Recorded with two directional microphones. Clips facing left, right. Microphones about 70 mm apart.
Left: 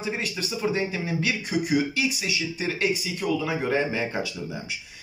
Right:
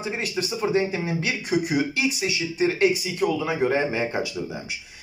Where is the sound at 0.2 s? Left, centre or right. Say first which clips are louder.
Right 2 dB; right.